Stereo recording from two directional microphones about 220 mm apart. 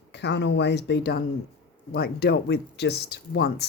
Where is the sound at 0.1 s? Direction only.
50° left (ahead or behind).